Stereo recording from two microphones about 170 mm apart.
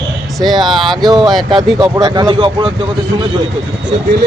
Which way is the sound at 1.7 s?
25° right (ahead or behind).